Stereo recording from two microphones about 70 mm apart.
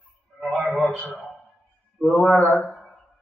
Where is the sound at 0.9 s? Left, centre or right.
Left.